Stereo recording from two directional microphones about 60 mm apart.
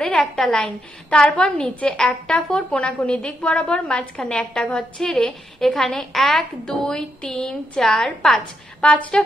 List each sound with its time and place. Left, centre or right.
0.0 s a woman's voice: centre